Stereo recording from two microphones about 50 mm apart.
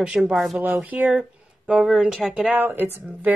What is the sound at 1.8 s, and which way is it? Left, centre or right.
Speech, centre.